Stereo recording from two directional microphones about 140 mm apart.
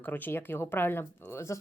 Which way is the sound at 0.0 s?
15° left (ahead or behind).